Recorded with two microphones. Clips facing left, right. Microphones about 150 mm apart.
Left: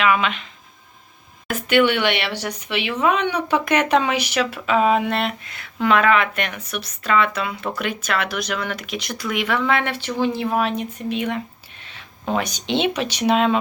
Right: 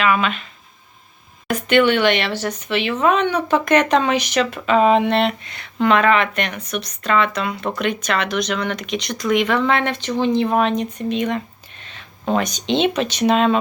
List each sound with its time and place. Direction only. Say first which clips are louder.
0.1 s speech: right 1 dB; 15° left (ahead or behind)
1.5 s speech: right 2 dB; centre (ahead or behind)